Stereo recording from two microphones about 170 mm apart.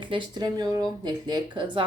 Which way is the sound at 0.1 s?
25° right (ahead or behind).